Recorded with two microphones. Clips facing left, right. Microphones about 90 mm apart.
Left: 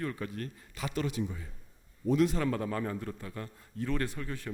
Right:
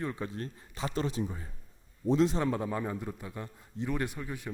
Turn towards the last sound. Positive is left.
turn(degrees=-15)  # may be behind; listen again after turning